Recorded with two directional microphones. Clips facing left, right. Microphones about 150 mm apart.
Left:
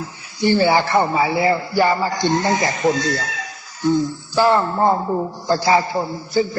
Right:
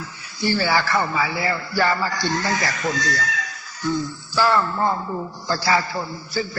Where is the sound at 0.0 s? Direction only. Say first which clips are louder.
Left 5 dB; 20° left (ahead or behind); by 5.3 s 35° left (ahead or behind).